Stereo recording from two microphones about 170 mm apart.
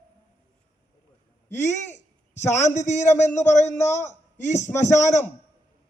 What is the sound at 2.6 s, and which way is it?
A man's voice, 45° left (ahead or behind).